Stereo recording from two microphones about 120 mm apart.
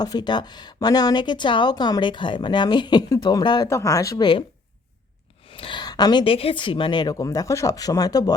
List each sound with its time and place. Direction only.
0.0 s speech: 35° left (ahead or behind)
3.7 s speech: 25° left (ahead or behind)
5.5 s a sound: 45° left (ahead or behind)
6.2 s speech: 50° left (ahead or behind); by 8.3 s 30° left (ahead or behind)